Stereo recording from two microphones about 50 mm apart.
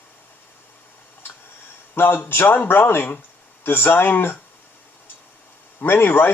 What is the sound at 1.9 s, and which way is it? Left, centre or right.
Speech, left.